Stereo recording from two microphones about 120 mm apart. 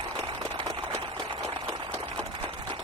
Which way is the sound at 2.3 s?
45° right (ahead or behind).